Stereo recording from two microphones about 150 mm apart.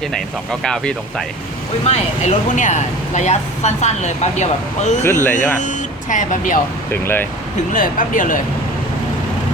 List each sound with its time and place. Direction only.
0.6 s speech: 5° left (ahead or behind)
1.9 s speech: 55° left (ahead or behind)
5.0 s speech: 15° left (ahead or behind)
5.5 s speech: 55° left (ahead or behind)
6.9 s speech: 15° left (ahead or behind)
7.7 s speech: 65° left (ahead or behind)